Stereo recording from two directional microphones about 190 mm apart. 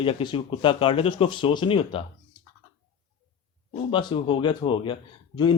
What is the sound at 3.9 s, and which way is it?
Speech, 25° left (ahead or behind).